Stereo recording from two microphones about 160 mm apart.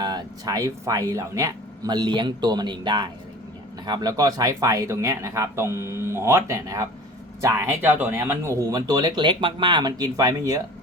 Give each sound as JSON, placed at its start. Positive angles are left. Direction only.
{"t": 0.0, "sound": "speech", "side_deg": -25}